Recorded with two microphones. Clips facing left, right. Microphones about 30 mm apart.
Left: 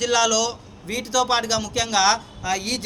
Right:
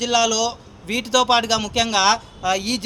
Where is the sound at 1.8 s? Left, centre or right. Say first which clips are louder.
Even; right.